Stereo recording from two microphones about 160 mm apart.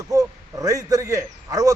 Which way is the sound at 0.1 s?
20° right (ahead or behind).